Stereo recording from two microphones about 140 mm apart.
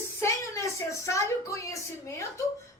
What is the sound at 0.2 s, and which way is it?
A woman's voice, 20° left (ahead or behind).